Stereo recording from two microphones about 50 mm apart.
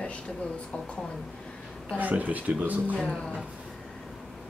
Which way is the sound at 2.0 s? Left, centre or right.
Right.